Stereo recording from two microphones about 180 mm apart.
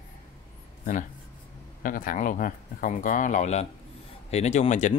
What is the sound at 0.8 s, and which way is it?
Speech, 45° left (ahead or behind).